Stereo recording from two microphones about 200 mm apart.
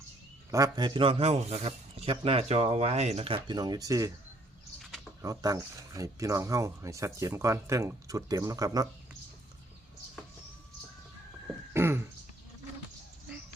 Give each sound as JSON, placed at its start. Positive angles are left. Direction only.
{"t": 0.5, "sound": "speech", "side_deg": -20}
{"t": 5.2, "sound": "speech", "side_deg": -15}
{"t": 11.7, "sound": "throat clearing", "side_deg": -10}